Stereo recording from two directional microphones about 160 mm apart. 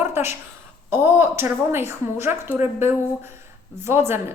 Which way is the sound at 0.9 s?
15° right (ahead or behind).